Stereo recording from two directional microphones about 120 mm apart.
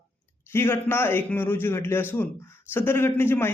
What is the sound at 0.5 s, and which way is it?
Speech, 20° left (ahead or behind).